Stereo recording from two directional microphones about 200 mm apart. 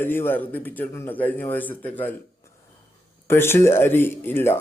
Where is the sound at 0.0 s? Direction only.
10° left (ahead or behind).